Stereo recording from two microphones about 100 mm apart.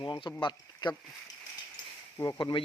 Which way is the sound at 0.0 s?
50° left (ahead or behind).